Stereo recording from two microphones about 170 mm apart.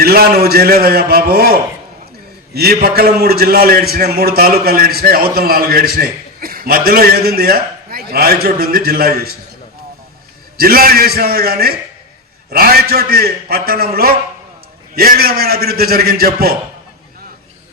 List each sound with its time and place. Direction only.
0.0 s a man's voice: 60° right (ahead or behind)
10.6 s a man's voice: 60° right (ahead or behind)